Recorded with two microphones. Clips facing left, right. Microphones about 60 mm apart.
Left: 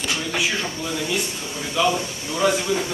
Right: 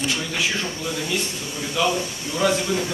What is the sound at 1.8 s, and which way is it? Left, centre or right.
Speech, centre.